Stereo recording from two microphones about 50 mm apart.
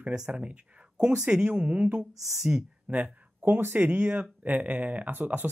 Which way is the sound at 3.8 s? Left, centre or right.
Right.